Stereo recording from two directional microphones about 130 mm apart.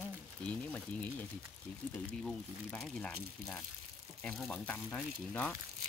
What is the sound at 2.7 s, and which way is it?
Speech, 5° left (ahead or behind).